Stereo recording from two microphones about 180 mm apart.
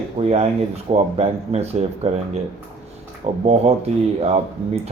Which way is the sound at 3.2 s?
35° right (ahead or behind).